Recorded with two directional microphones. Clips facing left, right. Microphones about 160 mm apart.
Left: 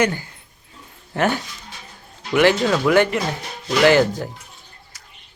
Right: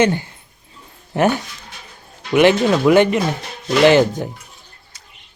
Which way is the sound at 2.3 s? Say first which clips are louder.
Right 3 dB; 20° right (ahead or behind).